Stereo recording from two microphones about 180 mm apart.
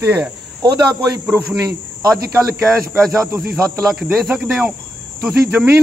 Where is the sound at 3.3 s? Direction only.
15° right (ahead or behind).